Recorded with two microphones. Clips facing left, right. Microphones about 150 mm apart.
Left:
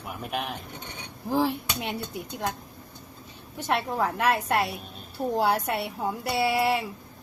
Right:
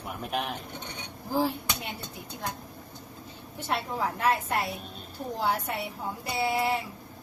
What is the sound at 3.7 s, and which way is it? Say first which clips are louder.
A woman's voice: left 4 dB; 65° left (ahead or behind).